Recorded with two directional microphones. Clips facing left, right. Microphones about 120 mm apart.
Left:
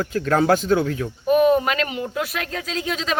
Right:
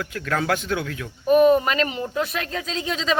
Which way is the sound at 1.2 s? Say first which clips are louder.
Right 1 dB; centre (ahead or behind).